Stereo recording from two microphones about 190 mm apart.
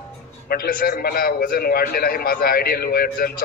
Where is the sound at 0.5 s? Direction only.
50° left (ahead or behind).